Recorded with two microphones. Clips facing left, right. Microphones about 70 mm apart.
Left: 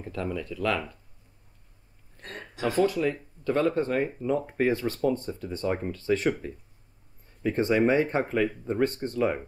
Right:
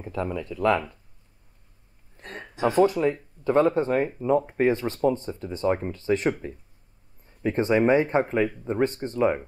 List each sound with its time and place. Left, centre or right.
0.0 s speech: centre
2.1 s a sound: right
2.9 s speech: centre
7.2 s speech: centre